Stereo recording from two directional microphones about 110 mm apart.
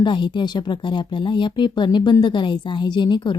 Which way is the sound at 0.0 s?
45° left (ahead or behind).